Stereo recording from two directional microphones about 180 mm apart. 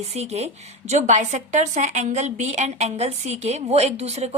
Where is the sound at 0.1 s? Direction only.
35° right (ahead or behind).